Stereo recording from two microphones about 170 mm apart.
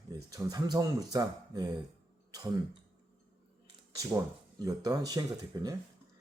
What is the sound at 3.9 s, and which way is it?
Speech, 20° right (ahead or behind).